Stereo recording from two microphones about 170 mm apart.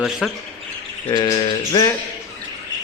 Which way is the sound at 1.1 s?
25° left (ahead or behind).